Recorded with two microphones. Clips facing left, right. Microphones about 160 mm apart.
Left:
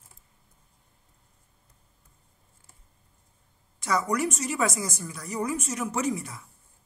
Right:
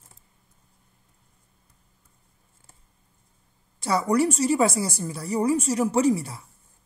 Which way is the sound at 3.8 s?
30° right (ahead or behind).